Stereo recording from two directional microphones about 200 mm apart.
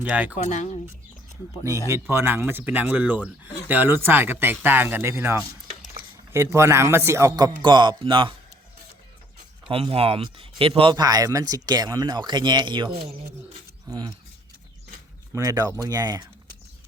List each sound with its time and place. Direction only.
0.0 s speech: 5° right (ahead or behind)
0.3 s speech: 35° left (ahead or behind)
1.9 s speech: 10° right (ahead or behind)
9.6 s speech: 25° right (ahead or behind)
15.3 s speech: 15° right (ahead or behind)